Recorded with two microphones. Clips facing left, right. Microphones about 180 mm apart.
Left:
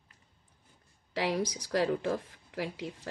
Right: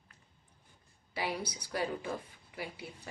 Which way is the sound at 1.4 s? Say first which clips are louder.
Left 7 dB; 90° left.